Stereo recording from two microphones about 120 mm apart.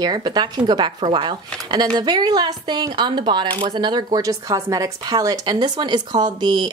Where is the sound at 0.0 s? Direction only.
35° right (ahead or behind).